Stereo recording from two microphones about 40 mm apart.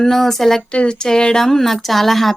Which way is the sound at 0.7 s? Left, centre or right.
Left.